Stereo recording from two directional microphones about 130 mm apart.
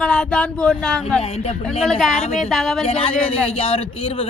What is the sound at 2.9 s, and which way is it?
A man's voice, 45° left (ahead or behind).